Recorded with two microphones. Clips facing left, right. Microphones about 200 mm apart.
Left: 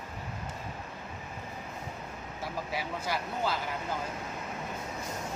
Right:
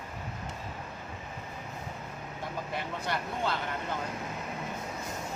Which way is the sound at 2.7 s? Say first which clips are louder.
Even; 5° left (ahead or behind).